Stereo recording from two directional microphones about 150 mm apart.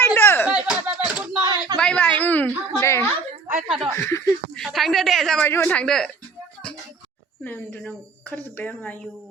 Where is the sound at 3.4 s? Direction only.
50° right (ahead or behind).